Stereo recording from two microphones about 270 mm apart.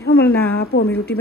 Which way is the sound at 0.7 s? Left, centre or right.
Left.